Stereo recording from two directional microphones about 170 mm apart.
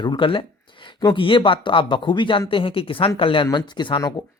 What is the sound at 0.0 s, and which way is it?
Speech, 30° left (ahead or behind).